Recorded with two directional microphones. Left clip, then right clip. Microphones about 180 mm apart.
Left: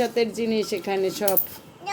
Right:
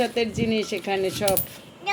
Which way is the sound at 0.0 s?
Centre (ahead or behind).